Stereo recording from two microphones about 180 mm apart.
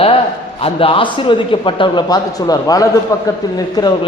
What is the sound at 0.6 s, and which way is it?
A man's voice, 30° left (ahead or behind).